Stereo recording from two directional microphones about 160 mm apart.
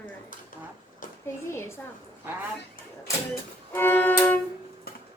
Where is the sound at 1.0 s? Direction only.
55° left (ahead or behind).